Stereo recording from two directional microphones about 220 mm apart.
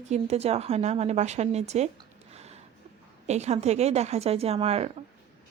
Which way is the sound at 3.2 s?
30° right (ahead or behind).